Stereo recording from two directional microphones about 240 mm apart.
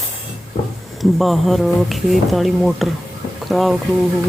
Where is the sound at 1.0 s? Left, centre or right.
Centre.